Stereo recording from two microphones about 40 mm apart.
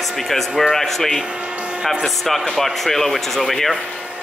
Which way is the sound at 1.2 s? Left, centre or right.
Right.